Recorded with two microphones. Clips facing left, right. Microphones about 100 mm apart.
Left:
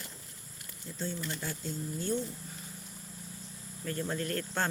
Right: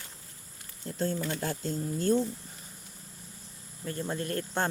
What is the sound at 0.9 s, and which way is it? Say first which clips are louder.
Speech: right 6 dB; 45° right (ahead or behind).